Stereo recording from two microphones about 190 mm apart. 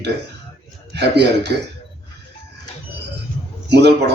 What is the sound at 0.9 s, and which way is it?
Speech, 60° right (ahead or behind).